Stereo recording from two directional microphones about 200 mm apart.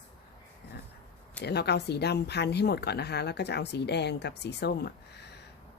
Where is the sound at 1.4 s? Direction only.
55° left (ahead or behind).